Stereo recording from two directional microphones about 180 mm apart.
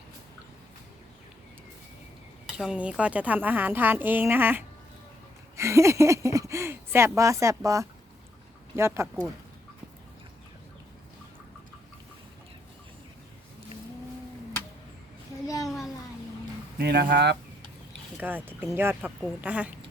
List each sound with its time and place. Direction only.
2.6 s a woman's voice: 5° right (ahead or behind)
15.6 s a sound: centre (ahead or behind)
16.7 s speech: 65° right (ahead or behind)
18.2 s a woman's voice: 10° right (ahead or behind)